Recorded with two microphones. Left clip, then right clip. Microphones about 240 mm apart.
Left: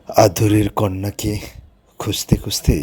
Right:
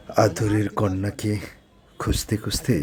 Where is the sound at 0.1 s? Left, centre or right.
Centre.